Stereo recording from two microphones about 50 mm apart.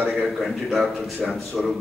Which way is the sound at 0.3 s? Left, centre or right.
Centre.